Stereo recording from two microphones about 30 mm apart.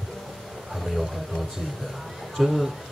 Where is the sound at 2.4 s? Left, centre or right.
Centre.